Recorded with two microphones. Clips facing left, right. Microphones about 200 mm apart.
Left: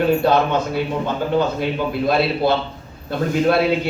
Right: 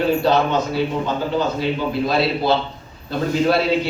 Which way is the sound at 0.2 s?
55° left (ahead or behind).